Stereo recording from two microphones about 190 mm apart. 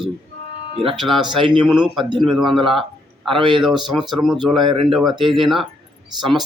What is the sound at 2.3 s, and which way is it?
Speech, centre (ahead or behind).